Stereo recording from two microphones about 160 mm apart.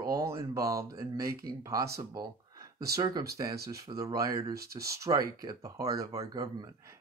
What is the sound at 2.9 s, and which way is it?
Speech, 20° right (ahead or behind).